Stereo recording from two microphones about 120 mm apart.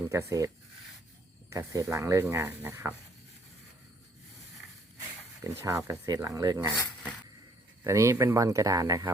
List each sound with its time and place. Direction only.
0.0 s speech: 25° right (ahead or behind)
1.5 s speech: 30° right (ahead or behind)
5.4 s speech: 25° right (ahead or behind)
7.9 s speech: 25° right (ahead or behind)